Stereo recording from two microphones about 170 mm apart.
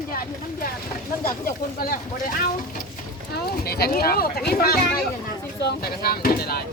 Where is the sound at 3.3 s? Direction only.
65° left (ahead or behind).